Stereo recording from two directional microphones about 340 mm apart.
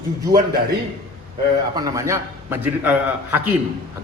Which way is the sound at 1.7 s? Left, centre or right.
Centre.